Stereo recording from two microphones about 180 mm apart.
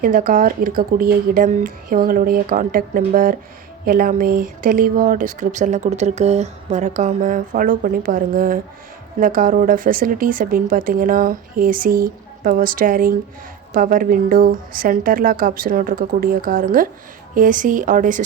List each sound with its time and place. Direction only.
0.0 s speech: 50° right (ahead or behind)